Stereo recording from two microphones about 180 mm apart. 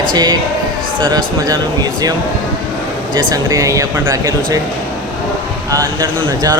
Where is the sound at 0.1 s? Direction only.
25° right (ahead or behind).